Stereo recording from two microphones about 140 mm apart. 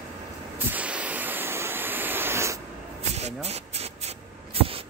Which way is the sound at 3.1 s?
50° right (ahead or behind).